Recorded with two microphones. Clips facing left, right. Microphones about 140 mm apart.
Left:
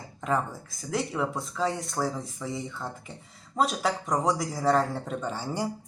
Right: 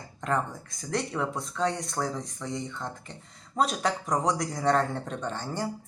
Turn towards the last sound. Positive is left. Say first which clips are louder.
# left 2 dB
turn(degrees=10)  # may be behind; listen again after turning